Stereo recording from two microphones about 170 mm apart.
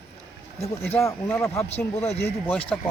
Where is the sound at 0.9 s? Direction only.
15° left (ahead or behind).